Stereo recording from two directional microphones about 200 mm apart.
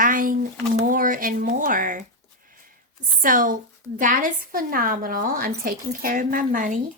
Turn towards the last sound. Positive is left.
turn(degrees=-40)  # may be behind; listen again after turning